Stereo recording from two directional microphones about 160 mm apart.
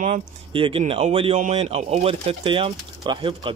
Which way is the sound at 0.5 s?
35° right (ahead or behind).